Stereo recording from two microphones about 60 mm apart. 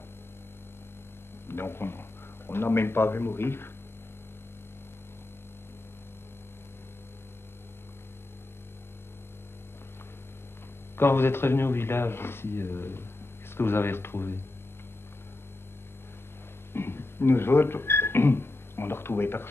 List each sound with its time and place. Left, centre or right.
1.5 s a man's voice: left
11.0 s speech: left
16.7 s a sound: left